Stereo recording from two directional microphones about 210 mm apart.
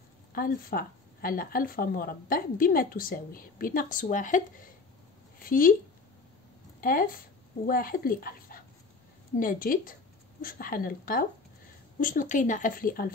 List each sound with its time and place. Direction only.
0.3 s speech: 45° left (ahead or behind)
5.4 s speech: 40° left (ahead or behind)
6.8 s speech: 40° left (ahead or behind)